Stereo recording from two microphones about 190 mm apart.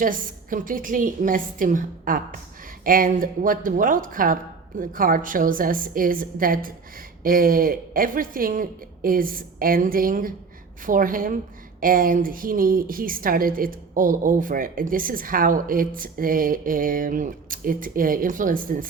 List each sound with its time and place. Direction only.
0.0 s a woman's voice: 45° right (ahead or behind)